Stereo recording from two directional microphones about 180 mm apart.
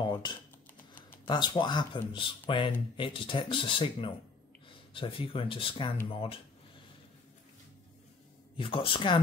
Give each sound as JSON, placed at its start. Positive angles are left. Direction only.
{"t": 0.0, "sound": "computer keyboard", "side_deg": 25}
{"t": 1.2, "sound": "speech", "side_deg": 25}
{"t": 8.5, "sound": "speech", "side_deg": 30}